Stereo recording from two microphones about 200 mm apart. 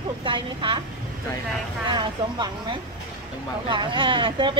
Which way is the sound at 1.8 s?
20° right (ahead or behind).